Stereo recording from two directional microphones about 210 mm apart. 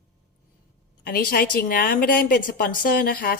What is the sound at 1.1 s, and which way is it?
A woman's voice, 45° left (ahead or behind).